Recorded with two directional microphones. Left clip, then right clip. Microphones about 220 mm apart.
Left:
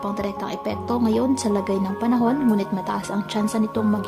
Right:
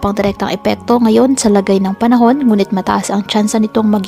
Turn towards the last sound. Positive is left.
turn(degrees=-35)  # may be behind; listen again after turning